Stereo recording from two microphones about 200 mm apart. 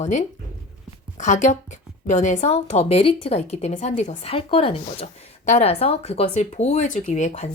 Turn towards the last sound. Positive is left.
turn(degrees=35)  # may be behind; listen again after turning